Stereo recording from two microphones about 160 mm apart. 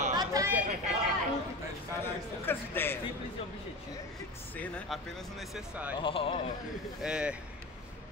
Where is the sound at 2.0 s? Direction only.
15° left (ahead or behind).